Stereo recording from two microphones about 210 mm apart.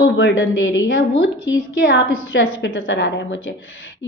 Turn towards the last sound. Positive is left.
turn(degrees=60)  # may be behind; listen again after turning